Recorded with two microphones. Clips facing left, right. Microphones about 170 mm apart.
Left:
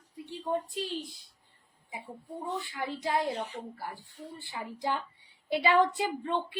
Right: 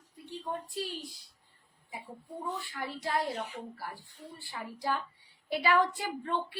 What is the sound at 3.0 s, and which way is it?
Speech, 20° left (ahead or behind).